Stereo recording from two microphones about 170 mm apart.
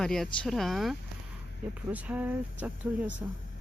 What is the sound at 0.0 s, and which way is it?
Speech, centre (ahead or behind).